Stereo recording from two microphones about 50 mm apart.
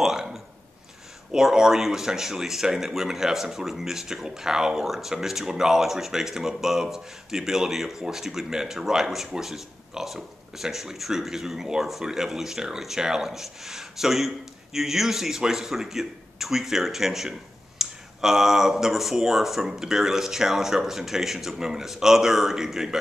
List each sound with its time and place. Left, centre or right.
0.0 s speech: centre